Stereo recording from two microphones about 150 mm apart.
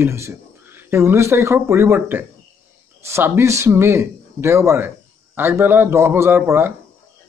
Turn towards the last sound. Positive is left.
turn(degrees=-15)  # may be behind; listen again after turning